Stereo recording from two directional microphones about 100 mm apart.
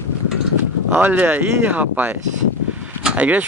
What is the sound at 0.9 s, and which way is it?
Speech, 20° right (ahead or behind).